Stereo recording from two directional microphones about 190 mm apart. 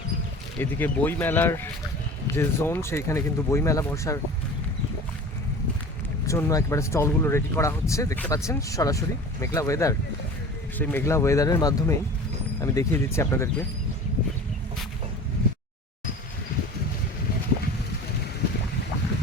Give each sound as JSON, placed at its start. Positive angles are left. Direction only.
{"t": 0.6, "sound": "speech", "side_deg": 10}
{"t": 6.2, "sound": "speech", "side_deg": 15}